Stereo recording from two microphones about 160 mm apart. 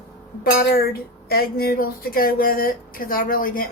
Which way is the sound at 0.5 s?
70° left (ahead or behind).